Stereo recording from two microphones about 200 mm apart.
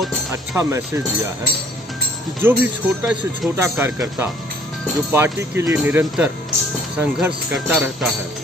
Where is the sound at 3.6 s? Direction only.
15° right (ahead or behind).